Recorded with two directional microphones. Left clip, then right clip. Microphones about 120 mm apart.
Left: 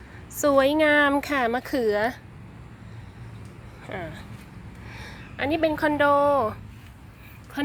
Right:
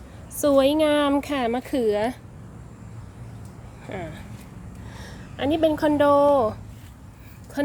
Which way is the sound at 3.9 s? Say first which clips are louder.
Even; 30° right (ahead or behind).